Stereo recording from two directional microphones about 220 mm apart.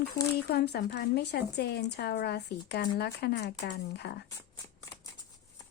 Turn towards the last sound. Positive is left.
turn(degrees=50)  # may be behind; listen again after turning